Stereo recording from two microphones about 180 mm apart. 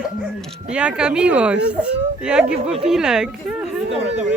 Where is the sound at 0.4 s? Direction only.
5° right (ahead or behind).